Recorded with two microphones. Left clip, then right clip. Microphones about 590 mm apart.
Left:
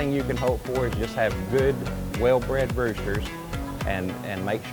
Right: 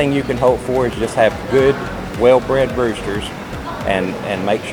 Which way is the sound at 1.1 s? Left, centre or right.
Left.